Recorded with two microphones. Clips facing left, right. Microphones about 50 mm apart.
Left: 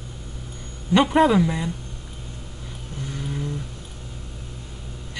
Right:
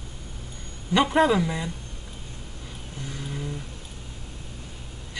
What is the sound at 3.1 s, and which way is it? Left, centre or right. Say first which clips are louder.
Vehicle: left 4 dB; centre.